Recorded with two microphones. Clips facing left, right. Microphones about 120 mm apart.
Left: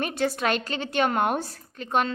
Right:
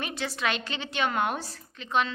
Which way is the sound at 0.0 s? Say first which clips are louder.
Left 6 dB; 50° left (ahead or behind).